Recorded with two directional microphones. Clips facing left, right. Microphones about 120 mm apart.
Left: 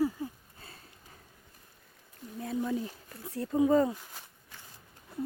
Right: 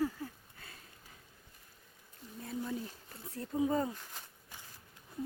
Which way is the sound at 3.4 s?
75° left (ahead or behind).